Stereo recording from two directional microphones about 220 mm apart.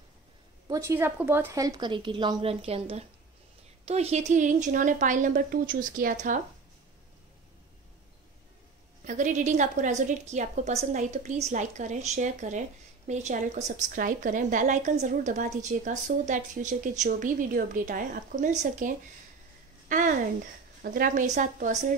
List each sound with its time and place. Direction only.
0.7 s a woman's voice: 15° right (ahead or behind); by 6.4 s 35° right (ahead or behind)
9.0 s a woman's voice: 35° right (ahead or behind)